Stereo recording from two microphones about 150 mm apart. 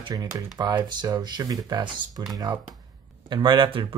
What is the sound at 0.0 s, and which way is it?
Speech, 25° right (ahead or behind).